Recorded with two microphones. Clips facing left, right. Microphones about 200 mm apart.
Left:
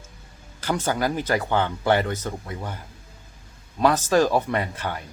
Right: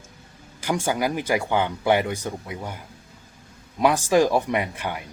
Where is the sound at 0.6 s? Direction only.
10° right (ahead or behind).